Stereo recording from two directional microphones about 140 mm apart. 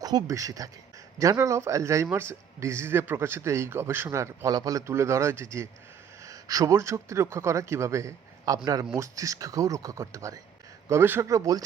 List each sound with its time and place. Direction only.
0.0 s speech: 30° right (ahead or behind)